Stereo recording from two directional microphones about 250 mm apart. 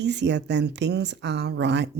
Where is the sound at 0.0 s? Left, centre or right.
Right.